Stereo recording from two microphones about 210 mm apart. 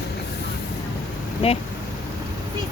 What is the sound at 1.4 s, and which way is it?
Speech, 25° left (ahead or behind).